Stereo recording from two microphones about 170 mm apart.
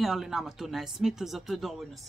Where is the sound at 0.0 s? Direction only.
Centre (ahead or behind).